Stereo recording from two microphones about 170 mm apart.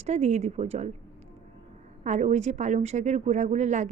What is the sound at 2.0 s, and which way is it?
A woman's voice, 45° right (ahead or behind).